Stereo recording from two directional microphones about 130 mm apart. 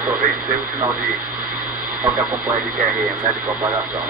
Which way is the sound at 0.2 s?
90° right.